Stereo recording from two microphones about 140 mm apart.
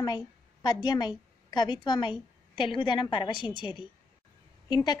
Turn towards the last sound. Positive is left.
turn(degrees=30)  # may be behind; listen again after turning